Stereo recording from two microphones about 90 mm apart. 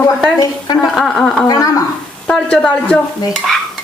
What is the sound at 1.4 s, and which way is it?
Speech, 45° left (ahead or behind).